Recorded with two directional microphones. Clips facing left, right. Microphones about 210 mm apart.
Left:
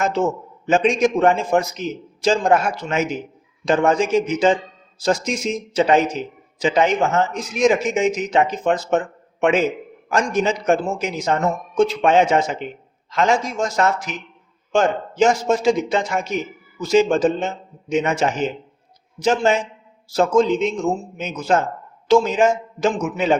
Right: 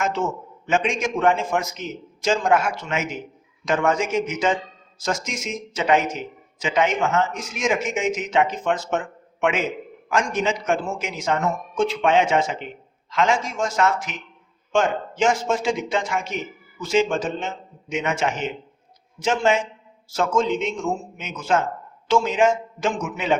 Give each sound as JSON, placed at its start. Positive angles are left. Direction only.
{"t": 0.0, "sound": "a man's voice", "side_deg": 35}